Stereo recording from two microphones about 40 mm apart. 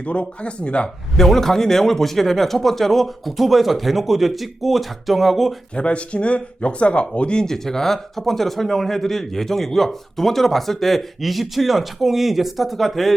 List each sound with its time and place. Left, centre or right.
0.0 s speech: left
1.1 s speech: centre
5.7 s speech: left
7.4 s speech: centre